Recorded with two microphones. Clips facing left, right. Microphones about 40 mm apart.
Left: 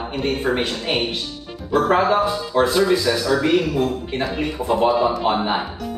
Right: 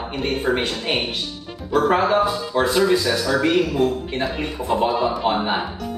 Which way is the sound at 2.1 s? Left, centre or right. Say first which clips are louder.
Even; centre.